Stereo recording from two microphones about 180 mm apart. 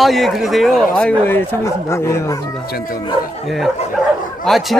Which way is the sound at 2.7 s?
55° left (ahead or behind).